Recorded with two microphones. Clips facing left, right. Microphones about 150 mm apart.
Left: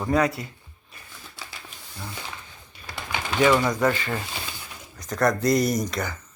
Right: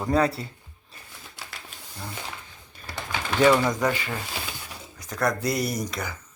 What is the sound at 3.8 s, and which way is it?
Speech, 10° right (ahead or behind).